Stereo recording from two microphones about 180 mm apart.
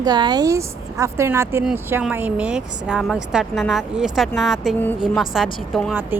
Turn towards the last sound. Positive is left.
turn(degrees=-10)  # may be behind; listen again after turning